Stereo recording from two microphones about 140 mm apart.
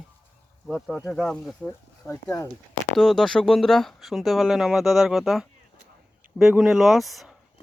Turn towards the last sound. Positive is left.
turn(degrees=0)  # may be behind; listen again after turning